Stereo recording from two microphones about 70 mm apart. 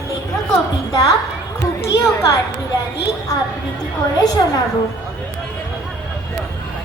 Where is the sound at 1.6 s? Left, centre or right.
Left.